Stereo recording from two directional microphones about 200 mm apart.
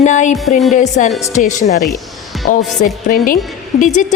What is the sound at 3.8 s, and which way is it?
Speech, 40° left (ahead or behind).